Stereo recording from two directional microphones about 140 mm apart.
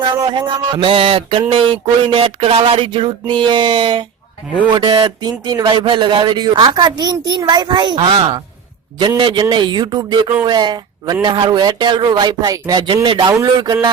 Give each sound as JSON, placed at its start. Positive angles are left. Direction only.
{"t": 0.0, "sound": "speech", "side_deg": -35}